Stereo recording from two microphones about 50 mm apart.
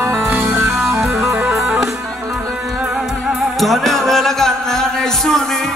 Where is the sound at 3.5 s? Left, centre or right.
Centre.